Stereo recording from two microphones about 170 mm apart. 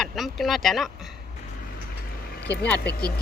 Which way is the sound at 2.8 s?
70° left (ahead or behind).